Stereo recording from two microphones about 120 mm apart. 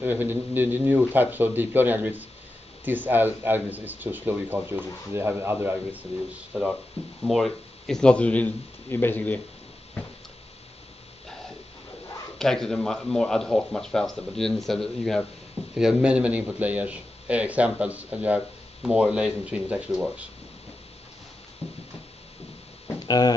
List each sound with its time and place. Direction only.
0.0 s a man's voice: 15° right (ahead or behind)
6.5 s speech: centre (ahead or behind); by 9.4 s 15° left (ahead or behind)
12.4 s a man's voice: 5° left (ahead or behind)
22.9 s a sound: 35° left (ahead or behind)